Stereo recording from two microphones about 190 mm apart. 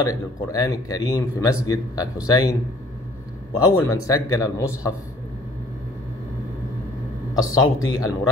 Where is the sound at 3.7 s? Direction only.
15° left (ahead or behind).